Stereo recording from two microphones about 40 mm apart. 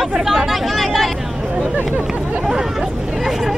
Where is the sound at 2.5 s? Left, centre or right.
Centre.